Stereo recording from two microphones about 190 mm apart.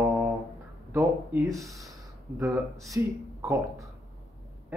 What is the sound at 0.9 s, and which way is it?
Speech, 15° right (ahead or behind).